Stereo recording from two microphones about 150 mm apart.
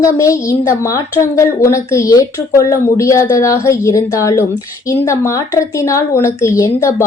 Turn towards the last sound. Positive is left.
turn(degrees=20)  # may be behind; listen again after turning